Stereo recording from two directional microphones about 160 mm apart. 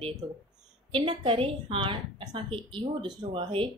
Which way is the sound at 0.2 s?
25° right (ahead or behind).